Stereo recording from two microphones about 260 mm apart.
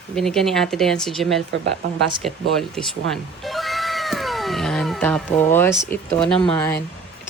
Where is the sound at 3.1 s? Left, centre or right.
Centre.